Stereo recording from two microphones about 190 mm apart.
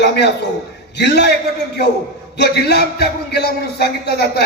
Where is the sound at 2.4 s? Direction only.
60° left (ahead or behind).